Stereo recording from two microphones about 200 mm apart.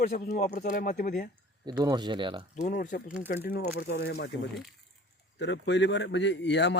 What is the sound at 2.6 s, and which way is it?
Speech, 40° left (ahead or behind).